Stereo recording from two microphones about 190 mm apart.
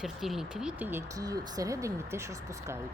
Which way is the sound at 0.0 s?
Centre (ahead or behind).